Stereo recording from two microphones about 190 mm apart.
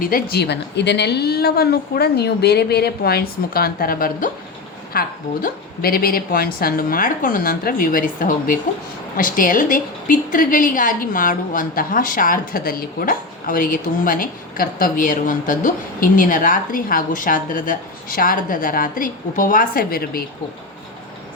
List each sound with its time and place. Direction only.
0.0 s a woman's voice: 50° left (ahead or behind)